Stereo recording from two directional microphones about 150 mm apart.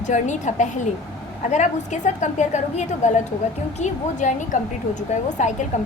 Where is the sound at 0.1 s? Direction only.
55° left (ahead or behind).